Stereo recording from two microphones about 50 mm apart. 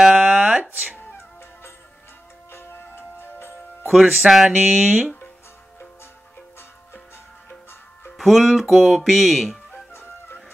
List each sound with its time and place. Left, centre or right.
0.0 s speech: centre
0.3 s a sound: right
2.5 s music: left
3.9 s speech: centre
4.6 s speech: right
8.2 s speech: centre
9.9 s music: left